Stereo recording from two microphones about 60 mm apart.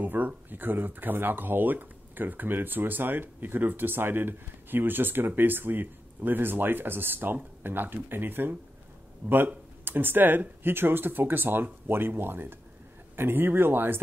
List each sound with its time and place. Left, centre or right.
0.0 s speech: right
9.2 s speech: right
9.8 s speech: right